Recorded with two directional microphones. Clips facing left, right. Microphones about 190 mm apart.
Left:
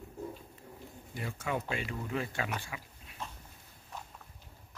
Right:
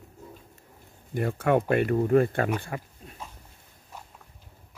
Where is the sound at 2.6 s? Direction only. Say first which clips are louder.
Right 10 dB; 50° right (ahead or behind).